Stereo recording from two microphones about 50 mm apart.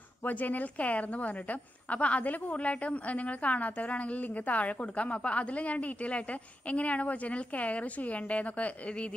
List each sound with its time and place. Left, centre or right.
0.2 s a woman's voice: left